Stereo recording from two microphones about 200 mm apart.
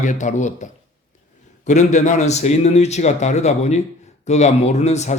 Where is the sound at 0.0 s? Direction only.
40° left (ahead or behind).